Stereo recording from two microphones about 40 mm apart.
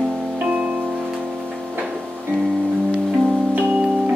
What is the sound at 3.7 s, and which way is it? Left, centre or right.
Organ, right.